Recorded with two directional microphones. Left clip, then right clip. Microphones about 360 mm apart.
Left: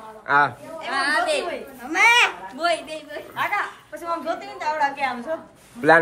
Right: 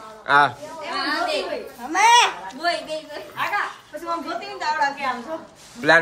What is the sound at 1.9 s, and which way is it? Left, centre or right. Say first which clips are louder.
Babbling: right 1 dB; centre.